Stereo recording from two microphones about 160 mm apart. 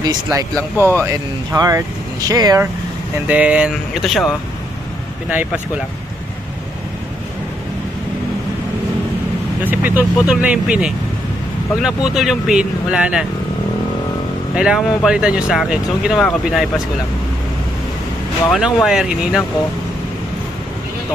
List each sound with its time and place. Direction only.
0.0 s speech: 25° right (ahead or behind)
3.3 s speech: 10° right (ahead or behind)
5.3 s speech: 10° right (ahead or behind)
9.7 s speech: 10° right (ahead or behind)
14.5 s speech: 5° right (ahead or behind)
18.5 s speech: centre (ahead or behind)